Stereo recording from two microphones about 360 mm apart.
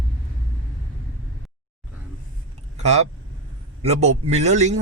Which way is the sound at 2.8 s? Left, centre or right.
Centre.